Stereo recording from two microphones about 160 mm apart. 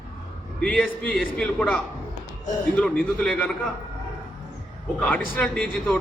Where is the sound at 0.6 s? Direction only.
5° left (ahead or behind).